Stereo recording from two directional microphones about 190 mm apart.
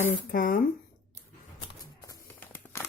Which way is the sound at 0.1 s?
45° left (ahead or behind).